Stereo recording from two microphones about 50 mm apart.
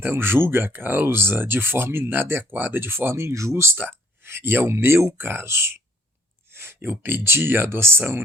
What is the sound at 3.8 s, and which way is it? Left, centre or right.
Speech, right.